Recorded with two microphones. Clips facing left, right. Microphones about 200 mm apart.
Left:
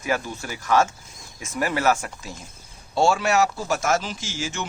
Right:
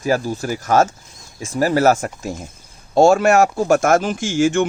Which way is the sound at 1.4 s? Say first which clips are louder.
Right 8 dB; 30° right (ahead or behind).